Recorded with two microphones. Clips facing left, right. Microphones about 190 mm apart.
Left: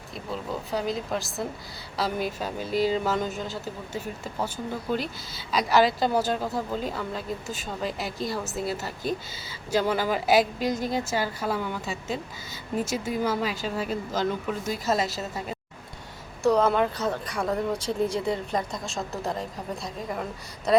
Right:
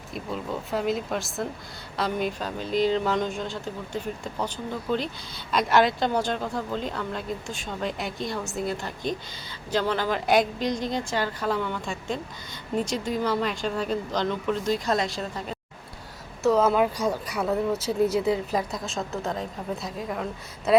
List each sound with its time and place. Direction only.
0.1 s a woman's voice: centre (ahead or behind)